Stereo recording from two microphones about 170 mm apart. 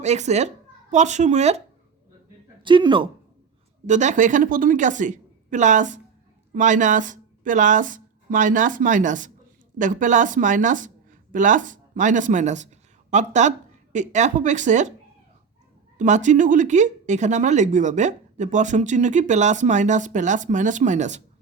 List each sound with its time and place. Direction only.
0.0 s speech: 40° right (ahead or behind)
2.6 s speech: 30° right (ahead or behind)
3.8 s speech: 45° right (ahead or behind)
16.0 s speech: 45° right (ahead or behind)